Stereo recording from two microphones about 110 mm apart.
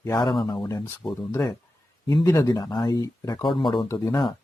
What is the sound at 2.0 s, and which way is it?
Speech, 40° left (ahead or behind).